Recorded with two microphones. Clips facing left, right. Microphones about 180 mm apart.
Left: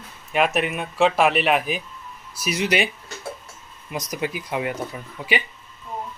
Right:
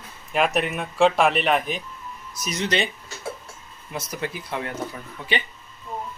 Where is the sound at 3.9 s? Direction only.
15° left (ahead or behind).